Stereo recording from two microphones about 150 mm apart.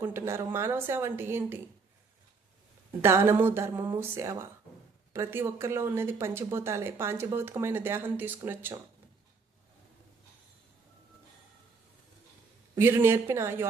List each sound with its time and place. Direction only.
0.0 s speech: 15° right (ahead or behind)
3.0 s speech: 15° right (ahead or behind)
12.7 s speech: 15° right (ahead or behind)